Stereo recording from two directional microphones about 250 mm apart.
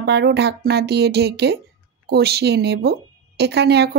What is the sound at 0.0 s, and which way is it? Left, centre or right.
A woman's voice, right.